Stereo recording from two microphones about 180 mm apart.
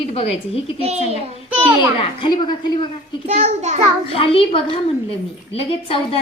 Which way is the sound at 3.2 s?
40° right (ahead or behind).